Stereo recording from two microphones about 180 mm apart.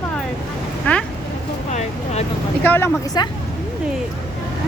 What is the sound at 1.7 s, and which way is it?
Vehicle, 35° left (ahead or behind).